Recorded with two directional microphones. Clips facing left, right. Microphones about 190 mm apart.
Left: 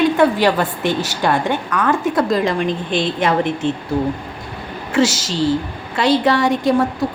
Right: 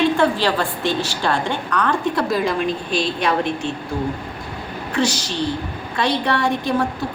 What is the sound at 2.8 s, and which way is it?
Speech, 20° left (ahead or behind).